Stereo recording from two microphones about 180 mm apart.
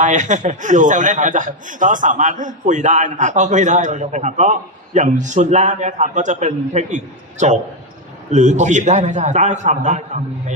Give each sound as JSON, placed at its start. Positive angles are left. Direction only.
{"t": 0.0, "sound": "a man's voice", "side_deg": -40}